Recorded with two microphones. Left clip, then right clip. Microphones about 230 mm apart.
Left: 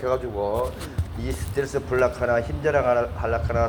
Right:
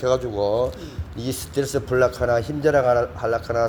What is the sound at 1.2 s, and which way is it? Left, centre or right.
Speech, right.